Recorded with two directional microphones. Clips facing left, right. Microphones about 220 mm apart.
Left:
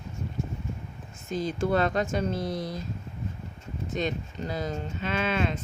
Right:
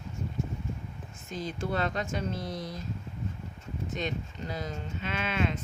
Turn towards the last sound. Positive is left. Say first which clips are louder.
# left 3 dB
turn(degrees=35)  # may be behind; listen again after turning